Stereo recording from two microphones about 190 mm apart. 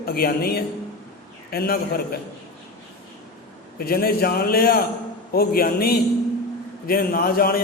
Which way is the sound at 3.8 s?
55° left (ahead or behind).